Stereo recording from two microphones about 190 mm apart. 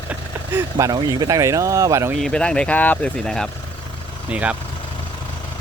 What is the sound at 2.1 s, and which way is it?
Speech, 5° left (ahead or behind).